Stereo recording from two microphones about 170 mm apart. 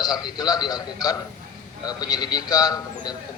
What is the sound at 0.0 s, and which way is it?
A man's voice, 25° left (ahead or behind).